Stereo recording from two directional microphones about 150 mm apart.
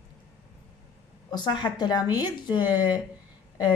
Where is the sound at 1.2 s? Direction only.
30° left (ahead or behind).